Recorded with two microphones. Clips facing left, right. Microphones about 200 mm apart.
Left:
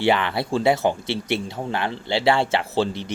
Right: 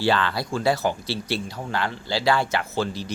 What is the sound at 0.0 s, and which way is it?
Speech, 20° left (ahead or behind).